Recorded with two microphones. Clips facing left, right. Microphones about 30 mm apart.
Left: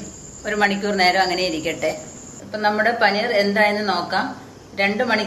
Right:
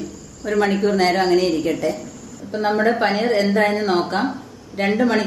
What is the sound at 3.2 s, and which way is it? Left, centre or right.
A woman's voice, centre.